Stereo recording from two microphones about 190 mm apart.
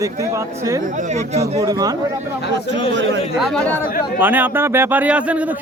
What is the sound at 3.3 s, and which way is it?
Speech, centre (ahead or behind).